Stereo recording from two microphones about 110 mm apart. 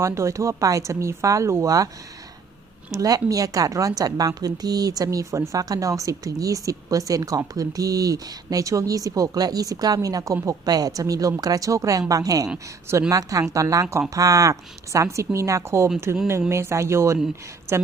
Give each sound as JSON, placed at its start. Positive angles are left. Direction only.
{"t": 0.0, "sound": "speech", "side_deg": -25}
{"t": 2.9, "sound": "a woman's voice", "side_deg": -30}